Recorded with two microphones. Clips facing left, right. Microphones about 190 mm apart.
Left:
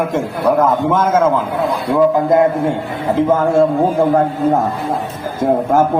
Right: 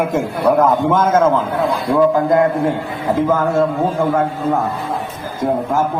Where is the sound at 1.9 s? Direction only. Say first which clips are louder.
Left 1 dB; 25° left (ahead or behind).